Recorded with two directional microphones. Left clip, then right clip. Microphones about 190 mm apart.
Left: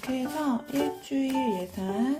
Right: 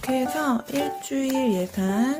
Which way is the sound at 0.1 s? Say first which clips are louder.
Right 6 dB; 30° right (ahead or behind).